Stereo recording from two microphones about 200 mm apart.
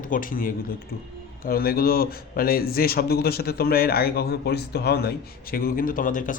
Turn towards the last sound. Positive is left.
turn(degrees=40)  # may be behind; listen again after turning